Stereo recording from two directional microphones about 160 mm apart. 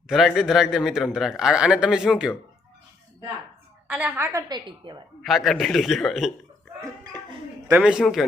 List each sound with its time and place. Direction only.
0.1 s a man's voice: centre (ahead or behind)
3.8 s a woman's voice: 10° right (ahead or behind); by 4.9 s 30° right (ahead or behind)
5.2 s a man's voice: centre (ahead or behind)
7.7 s a man's voice: 5° right (ahead or behind)